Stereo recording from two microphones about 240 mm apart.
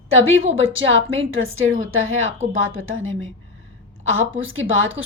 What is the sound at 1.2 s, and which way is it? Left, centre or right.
Speech, right.